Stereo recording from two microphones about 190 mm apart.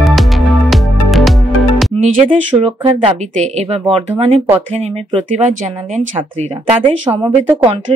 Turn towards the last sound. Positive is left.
turn(degrees=-25)  # may be behind; listen again after turning